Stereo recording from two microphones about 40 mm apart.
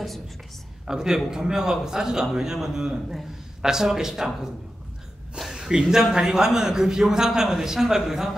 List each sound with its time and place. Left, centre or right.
0.8 s a man's voice: centre
5.6 s a man's voice: centre